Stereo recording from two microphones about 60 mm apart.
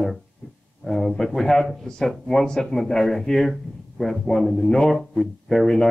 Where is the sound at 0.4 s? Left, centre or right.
Centre.